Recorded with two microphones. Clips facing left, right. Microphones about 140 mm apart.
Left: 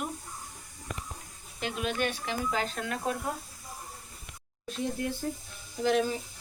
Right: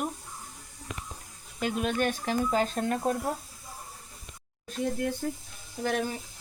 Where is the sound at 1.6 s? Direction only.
45° right (ahead or behind).